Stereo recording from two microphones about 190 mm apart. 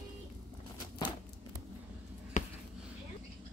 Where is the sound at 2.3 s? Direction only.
40° left (ahead or behind).